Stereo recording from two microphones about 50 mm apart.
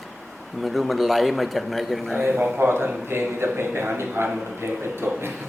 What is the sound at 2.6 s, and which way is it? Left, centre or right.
Speech, right.